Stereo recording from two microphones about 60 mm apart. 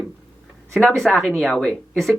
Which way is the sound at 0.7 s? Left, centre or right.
Centre.